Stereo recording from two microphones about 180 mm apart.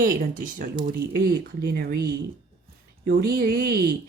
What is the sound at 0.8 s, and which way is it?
Speech, 60° right (ahead or behind).